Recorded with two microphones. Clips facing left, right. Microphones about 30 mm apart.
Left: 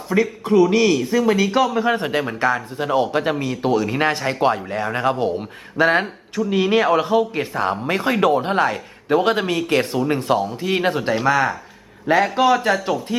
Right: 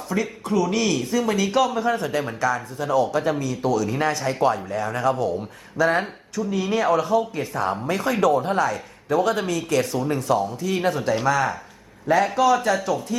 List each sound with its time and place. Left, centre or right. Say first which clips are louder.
0.1 s speech: left 7 dB; left
1.9 s a man's voice: left 3 dB; left